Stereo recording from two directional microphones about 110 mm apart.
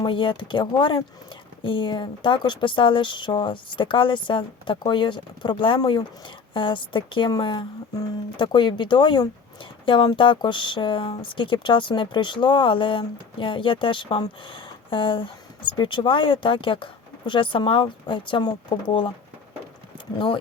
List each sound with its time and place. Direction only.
0.0 s speech: 50° left (ahead or behind)
20.1 s speech: 50° left (ahead or behind)